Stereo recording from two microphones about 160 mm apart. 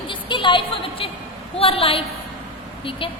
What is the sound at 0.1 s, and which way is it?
A woman's voice, 30° left (ahead or behind).